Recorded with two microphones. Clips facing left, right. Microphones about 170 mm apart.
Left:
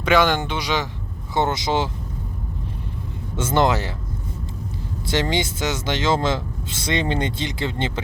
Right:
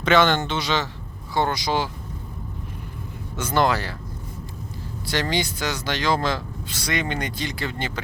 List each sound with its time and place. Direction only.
0.0 s speech: 10° left (ahead or behind)
3.3 s speech: 25° left (ahead or behind)
5.0 s speech: 20° left (ahead or behind)